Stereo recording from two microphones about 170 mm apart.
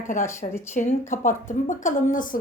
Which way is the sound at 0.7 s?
50° left (ahead or behind).